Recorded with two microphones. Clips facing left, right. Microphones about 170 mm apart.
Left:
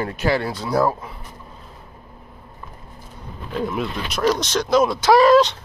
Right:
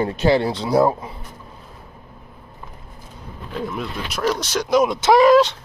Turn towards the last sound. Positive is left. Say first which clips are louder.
# even
turn(degrees=-10)  # may be behind; listen again after turning